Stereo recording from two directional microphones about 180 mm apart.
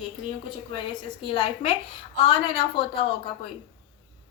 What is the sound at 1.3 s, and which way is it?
A woman's voice, 30° left (ahead or behind).